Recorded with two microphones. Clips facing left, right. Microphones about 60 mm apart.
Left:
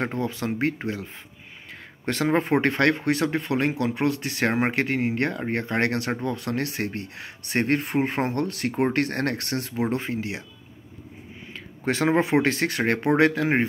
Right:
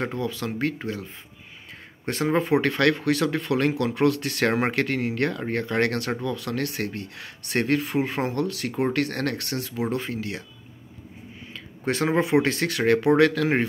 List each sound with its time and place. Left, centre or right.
0.0 s speech: left
11.5 s speech: left